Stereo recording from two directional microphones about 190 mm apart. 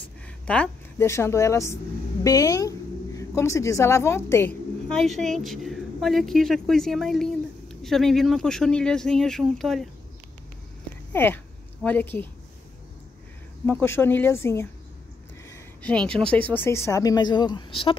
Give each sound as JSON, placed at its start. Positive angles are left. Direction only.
{"t": 0.5, "sound": "a woman's voice", "side_deg": 10}
{"t": 4.8, "sound": "a woman's voice", "side_deg": 0}
{"t": 11.1, "sound": "speech", "side_deg": 10}
{"t": 13.7, "sound": "a woman's voice", "side_deg": 10}